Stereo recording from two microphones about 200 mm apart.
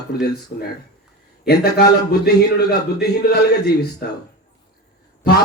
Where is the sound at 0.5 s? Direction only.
55° left (ahead or behind).